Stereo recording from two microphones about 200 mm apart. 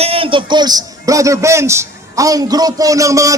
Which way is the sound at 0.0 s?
30° right (ahead or behind).